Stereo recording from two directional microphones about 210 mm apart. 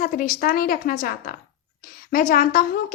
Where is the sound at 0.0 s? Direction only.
40° left (ahead or behind).